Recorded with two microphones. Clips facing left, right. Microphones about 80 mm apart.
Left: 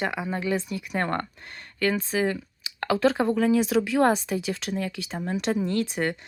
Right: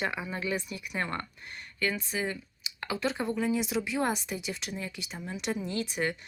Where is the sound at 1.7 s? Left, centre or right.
Left.